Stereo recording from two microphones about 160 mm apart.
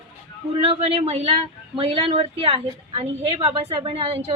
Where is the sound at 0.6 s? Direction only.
35° right (ahead or behind).